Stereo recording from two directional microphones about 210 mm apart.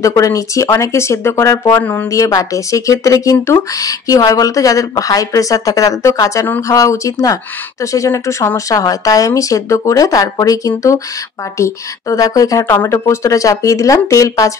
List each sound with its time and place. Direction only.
0.0 s speech: 15° left (ahead or behind)